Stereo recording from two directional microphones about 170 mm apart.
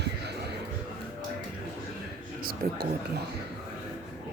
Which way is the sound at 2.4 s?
60° right (ahead or behind).